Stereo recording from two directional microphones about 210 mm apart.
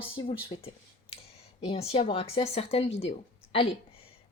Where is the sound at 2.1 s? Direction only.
25° left (ahead or behind).